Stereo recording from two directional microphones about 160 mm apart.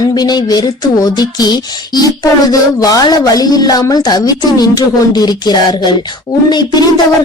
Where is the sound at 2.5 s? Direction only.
20° left (ahead or behind).